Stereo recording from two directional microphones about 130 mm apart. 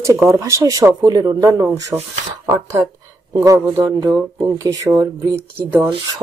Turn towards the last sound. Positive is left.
turn(degrees=-25)  # may be behind; listen again after turning